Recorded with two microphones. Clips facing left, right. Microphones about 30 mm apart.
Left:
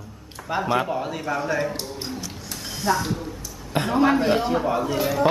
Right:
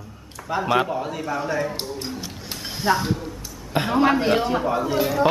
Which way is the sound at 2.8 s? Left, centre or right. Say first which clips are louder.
Right 2 dB; right.